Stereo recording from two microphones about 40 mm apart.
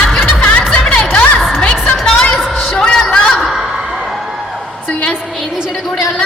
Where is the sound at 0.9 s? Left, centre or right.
Left.